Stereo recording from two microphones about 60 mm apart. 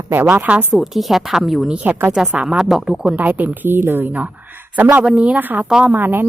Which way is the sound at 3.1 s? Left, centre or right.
Right.